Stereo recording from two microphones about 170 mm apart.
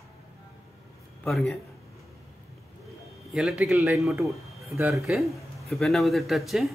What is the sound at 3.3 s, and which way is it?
A man's voice, centre (ahead or behind).